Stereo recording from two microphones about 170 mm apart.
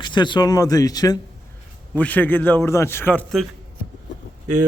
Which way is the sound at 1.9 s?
10° left (ahead or behind).